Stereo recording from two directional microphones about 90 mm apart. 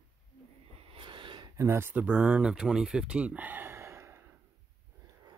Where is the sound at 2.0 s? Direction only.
10° right (ahead or behind); by 4.2 s 30° right (ahead or behind).